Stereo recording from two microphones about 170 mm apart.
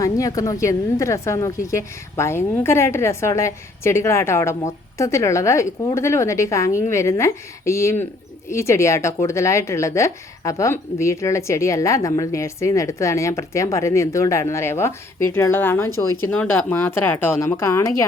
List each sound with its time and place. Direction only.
0.0 s a woman's voice: 20° left (ahead or behind)